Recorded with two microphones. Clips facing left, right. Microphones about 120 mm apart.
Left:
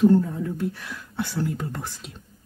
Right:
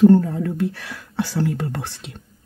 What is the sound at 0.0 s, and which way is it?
Speech, 80° right.